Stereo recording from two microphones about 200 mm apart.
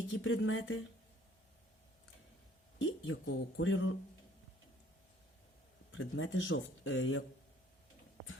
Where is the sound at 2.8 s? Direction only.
70° left (ahead or behind).